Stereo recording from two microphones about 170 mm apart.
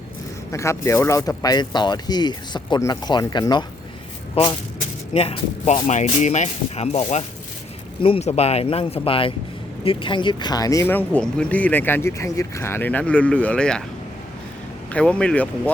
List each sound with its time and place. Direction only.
0.5 s speech: 15° left (ahead or behind)
5.1 s speech: 35° left (ahead or behind); by 13.8 s 5° left (ahead or behind)
14.9 s speech: 5° left (ahead or behind)